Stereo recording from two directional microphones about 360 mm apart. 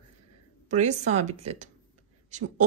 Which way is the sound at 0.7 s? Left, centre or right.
Centre.